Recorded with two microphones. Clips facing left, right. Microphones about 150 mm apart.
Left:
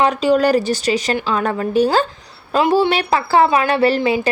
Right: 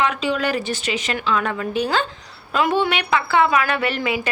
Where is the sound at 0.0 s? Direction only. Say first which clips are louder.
Left 7 dB; 40° left (ahead or behind).